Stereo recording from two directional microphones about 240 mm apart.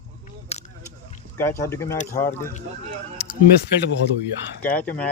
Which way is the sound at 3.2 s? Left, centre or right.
Left.